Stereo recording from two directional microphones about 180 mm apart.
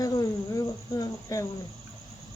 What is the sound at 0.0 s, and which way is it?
Insect, 20° left (ahead or behind).